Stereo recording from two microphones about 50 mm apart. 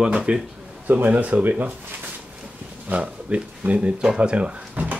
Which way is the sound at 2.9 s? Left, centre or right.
Right.